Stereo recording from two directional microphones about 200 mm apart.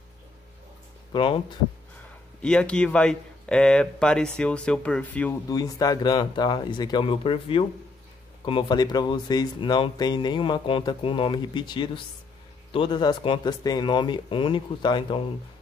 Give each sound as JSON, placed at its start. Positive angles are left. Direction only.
{"t": 1.1, "sound": "speech", "side_deg": 25}
{"t": 2.4, "sound": "speech", "side_deg": 5}
{"t": 5.5, "sound": "speech", "side_deg": 20}